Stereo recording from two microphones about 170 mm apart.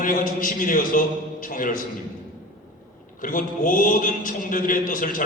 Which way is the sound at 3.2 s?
50° left (ahead or behind).